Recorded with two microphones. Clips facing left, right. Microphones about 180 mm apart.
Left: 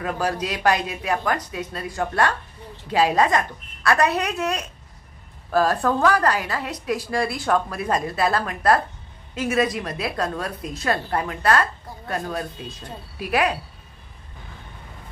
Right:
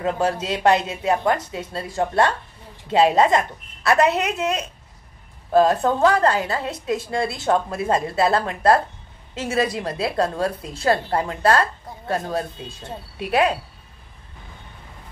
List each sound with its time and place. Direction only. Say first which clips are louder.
0.0 s a woman's voice: right 3 dB; 25° right (ahead or behind)